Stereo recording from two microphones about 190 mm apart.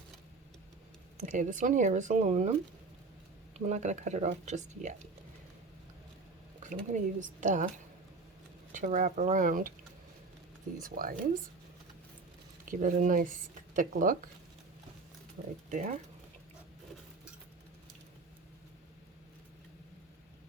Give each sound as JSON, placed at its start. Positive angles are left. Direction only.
{"t": 1.2, "sound": "speech", "side_deg": -40}
{"t": 3.7, "sound": "speech", "side_deg": -40}
{"t": 6.6, "sound": "speech", "side_deg": -40}
{"t": 8.7, "sound": "speech", "side_deg": -40}
{"t": 10.9, "sound": "speech", "side_deg": -50}
{"t": 12.6, "sound": "speech", "side_deg": -45}
{"t": 15.7, "sound": "speech", "side_deg": -40}